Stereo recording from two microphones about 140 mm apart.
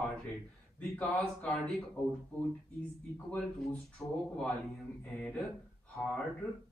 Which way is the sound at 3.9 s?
5° left (ahead or behind).